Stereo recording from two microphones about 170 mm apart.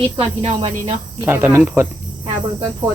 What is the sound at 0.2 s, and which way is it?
Speech, 40° right (ahead or behind).